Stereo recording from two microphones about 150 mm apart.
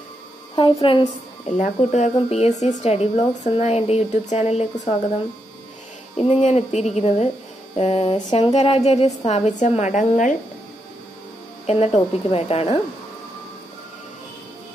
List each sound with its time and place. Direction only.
0.6 s a woman's voice: 35° left (ahead or behind)
1.6 s a woman's voice: 50° left (ahead or behind)
6.1 s a woman's voice: 45° left (ahead or behind)
11.6 s a woman's voice: 40° left (ahead or behind)